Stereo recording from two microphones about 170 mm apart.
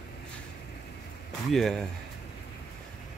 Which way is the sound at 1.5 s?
Centre (ahead or behind).